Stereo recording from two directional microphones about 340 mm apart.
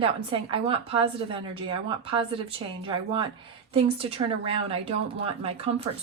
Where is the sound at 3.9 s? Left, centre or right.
Centre.